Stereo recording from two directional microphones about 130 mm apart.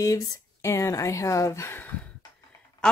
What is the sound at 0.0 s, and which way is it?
Speech, 25° left (ahead or behind).